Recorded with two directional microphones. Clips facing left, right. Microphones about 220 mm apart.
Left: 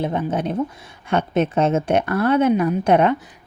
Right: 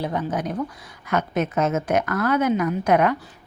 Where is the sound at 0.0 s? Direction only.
25° left (ahead or behind).